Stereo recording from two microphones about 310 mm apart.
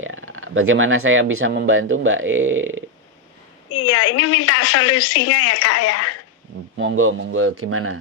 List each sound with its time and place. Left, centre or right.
0.0 s speech: right
3.7 s a woman's voice: left
6.8 s speech: right